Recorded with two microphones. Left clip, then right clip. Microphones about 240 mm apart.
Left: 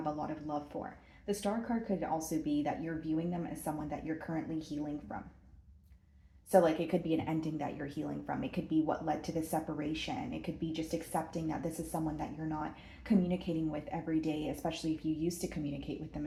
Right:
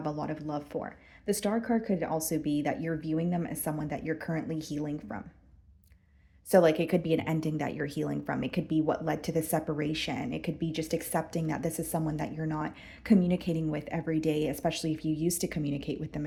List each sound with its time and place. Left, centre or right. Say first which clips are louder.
0.0 s speech: right 3 dB; right
6.5 s speech: right 5 dB; right